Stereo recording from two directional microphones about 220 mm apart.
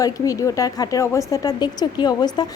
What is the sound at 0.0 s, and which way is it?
A woman's voice, 15° left (ahead or behind).